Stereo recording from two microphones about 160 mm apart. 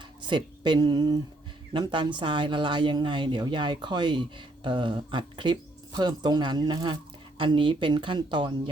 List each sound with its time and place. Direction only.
0.2 s speech: 30° right (ahead or behind)